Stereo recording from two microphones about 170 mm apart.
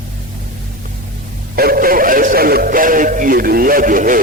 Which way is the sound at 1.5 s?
60° right (ahead or behind).